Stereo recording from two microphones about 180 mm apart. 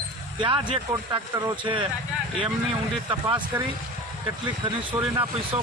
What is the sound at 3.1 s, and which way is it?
Speech, 25° right (ahead or behind).